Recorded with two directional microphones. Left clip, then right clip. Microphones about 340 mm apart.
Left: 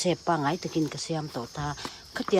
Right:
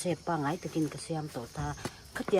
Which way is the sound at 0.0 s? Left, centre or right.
Left.